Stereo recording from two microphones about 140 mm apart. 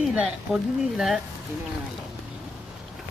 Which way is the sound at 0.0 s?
10° right (ahead or behind).